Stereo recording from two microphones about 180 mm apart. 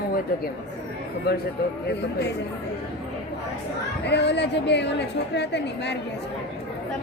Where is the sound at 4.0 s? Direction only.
70° left (ahead or behind).